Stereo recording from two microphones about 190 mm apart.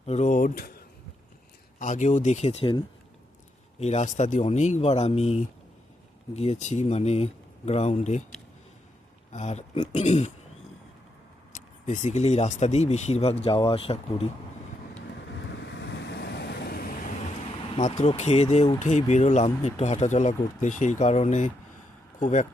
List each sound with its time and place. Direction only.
0.0 s speech: 35° left (ahead or behind)
1.8 s speech: 40° left (ahead or behind)
9.3 s speech: 35° left (ahead or behind)
11.5 s speech: 40° left (ahead or behind)
15.8 s vehicle: 65° left (ahead or behind)
18.0 s speech: 35° left (ahead or behind)
18.8 s speech: 40° left (ahead or behind)